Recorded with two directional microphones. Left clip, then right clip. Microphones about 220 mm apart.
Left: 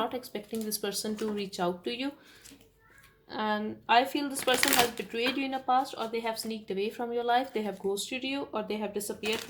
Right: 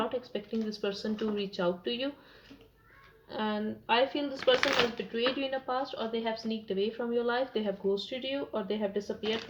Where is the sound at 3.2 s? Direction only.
50° left (ahead or behind).